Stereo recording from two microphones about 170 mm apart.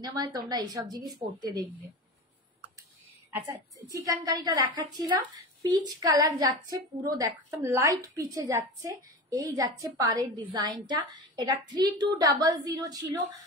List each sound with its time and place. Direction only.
0.0 s a woman's voice: 20° right (ahead or behind)
3.9 s a woman's voice: 20° right (ahead or behind)